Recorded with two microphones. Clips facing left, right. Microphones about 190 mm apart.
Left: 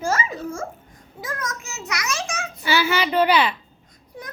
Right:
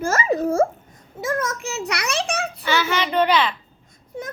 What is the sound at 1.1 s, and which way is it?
Speech, 25° right (ahead or behind).